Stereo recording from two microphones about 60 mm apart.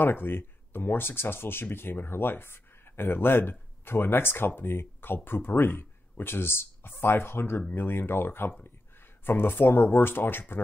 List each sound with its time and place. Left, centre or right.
0.0 s speech: left